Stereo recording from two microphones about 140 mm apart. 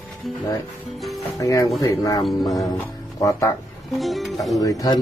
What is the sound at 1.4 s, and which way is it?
Speech, 25° left (ahead or behind).